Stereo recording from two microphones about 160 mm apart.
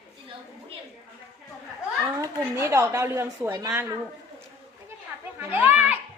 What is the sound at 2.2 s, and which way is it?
A woman's voice, 15° right (ahead or behind).